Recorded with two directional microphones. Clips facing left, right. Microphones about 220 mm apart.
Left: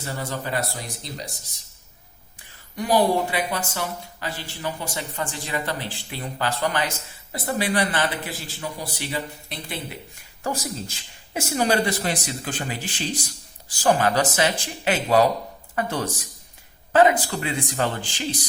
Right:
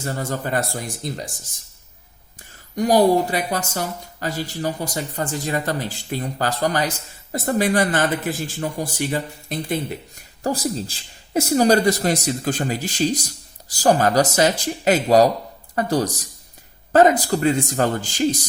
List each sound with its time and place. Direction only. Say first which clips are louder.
0.0 s speech: right 4 dB; 45° right (ahead or behind)
2.7 s a woman's voice: right 5 dB; 40° right (ahead or behind)
10.4 s a woman's voice: right 5 dB; 35° right (ahead or behind)